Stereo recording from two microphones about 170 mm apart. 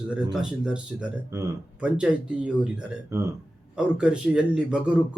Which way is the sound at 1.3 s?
15° right (ahead or behind).